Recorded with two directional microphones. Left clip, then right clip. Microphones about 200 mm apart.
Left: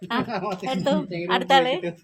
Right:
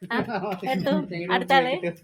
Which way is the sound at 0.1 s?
35° left (ahead or behind).